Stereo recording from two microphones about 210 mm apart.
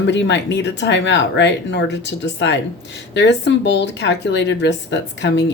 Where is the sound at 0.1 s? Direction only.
55° left (ahead or behind).